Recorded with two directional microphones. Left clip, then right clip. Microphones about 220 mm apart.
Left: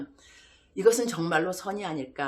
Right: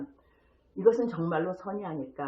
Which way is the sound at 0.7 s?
50° left (ahead or behind).